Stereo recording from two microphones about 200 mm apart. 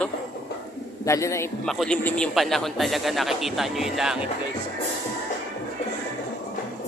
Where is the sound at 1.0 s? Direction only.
15° left (ahead or behind).